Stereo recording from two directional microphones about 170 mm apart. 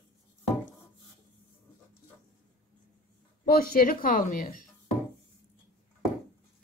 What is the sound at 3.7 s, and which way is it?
Speech, 60° left (ahead or behind).